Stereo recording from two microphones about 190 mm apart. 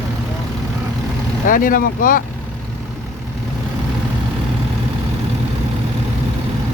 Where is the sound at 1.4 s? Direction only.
45° left (ahead or behind).